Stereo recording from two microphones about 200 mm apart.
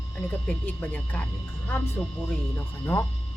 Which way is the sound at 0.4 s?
10° left (ahead or behind).